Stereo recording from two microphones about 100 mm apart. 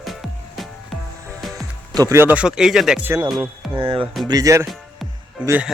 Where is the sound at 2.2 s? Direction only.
20° right (ahead or behind).